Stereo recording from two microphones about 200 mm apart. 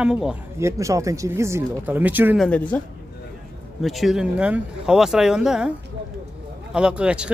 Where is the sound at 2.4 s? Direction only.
5° left (ahead or behind).